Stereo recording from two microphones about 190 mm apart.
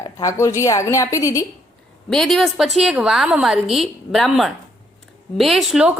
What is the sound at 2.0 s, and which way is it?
A woman's voice, centre (ahead or behind).